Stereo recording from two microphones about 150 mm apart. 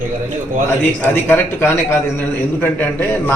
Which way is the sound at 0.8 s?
15° left (ahead or behind).